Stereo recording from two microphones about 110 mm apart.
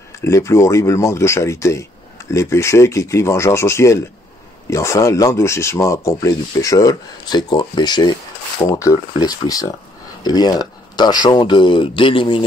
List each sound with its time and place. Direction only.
0.2 s speech: 25° left (ahead or behind)
8.6 s speech: 30° left (ahead or behind); by 12.4 s 50° left (ahead or behind)